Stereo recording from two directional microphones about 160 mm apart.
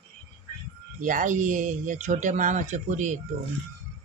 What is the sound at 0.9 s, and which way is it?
Speech, 55° right (ahead or behind).